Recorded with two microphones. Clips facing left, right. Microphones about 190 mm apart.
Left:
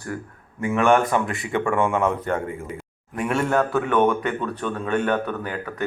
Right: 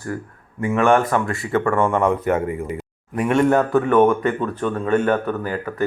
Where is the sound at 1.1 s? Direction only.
20° left (ahead or behind).